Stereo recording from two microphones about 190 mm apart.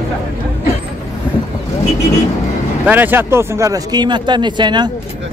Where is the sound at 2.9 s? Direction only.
10° right (ahead or behind).